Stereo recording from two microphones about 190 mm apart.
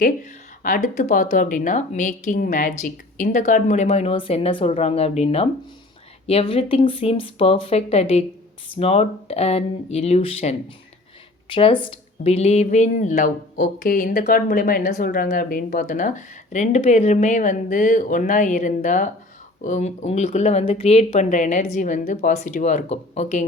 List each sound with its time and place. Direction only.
0.6 s a woman's voice: 45° left (ahead or behind)